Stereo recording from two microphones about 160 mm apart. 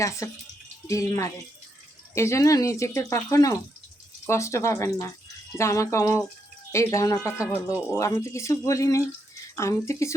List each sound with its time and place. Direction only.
0.2 s speech: 20° left (ahead or behind)